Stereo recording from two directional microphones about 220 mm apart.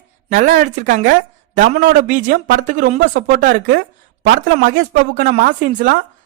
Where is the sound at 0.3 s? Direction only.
35° right (ahead or behind).